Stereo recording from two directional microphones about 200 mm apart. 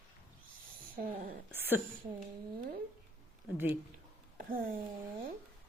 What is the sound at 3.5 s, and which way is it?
Speech, 10° right (ahead or behind).